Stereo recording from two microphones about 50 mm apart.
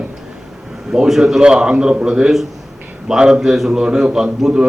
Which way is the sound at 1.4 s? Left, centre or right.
Centre.